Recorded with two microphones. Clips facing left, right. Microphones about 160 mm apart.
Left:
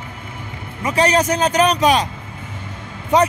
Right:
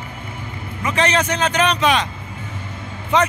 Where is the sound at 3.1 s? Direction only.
40° left (ahead or behind).